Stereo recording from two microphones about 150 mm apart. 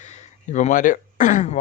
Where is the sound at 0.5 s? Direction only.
60° left (ahead or behind).